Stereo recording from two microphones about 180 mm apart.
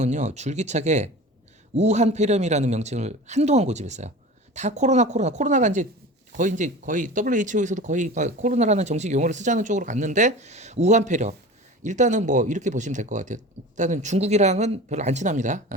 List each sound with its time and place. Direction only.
0.0 s speech: 40° right (ahead or behind)